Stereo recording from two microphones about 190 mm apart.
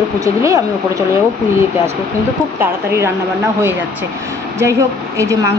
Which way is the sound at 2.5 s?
15° right (ahead or behind).